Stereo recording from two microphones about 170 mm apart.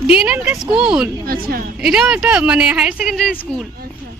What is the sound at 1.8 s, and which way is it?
Speech, 5° right (ahead or behind).